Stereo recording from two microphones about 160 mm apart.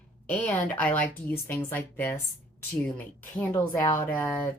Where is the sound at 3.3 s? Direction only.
10° left (ahead or behind).